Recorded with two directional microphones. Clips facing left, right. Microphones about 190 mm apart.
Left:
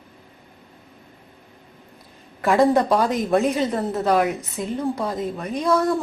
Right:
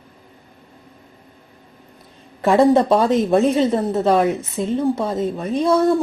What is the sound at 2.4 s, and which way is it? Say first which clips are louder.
A woman's voice: right 4 dB; 25° right (ahead or behind).